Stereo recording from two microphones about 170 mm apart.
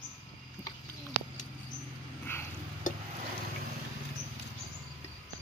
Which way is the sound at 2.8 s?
50° left (ahead or behind).